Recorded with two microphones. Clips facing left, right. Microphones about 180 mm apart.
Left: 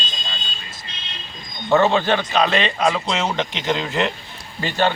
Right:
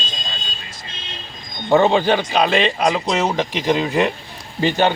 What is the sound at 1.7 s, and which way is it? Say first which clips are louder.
A man's voice: right 2 dB; 10° right (ahead or behind).